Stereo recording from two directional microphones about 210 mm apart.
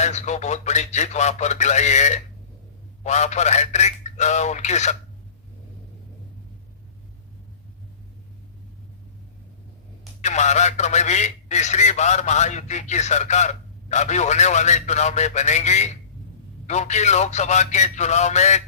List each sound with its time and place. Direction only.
0.0 s speech: 35° left (ahead or behind)
10.2 s speech: 35° left (ahead or behind)